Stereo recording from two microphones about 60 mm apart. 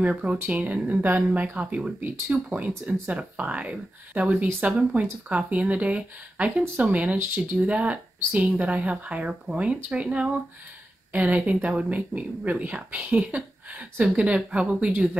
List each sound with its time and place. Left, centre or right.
0.0 s speech: centre